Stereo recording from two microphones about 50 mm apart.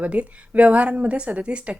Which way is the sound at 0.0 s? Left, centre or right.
Right.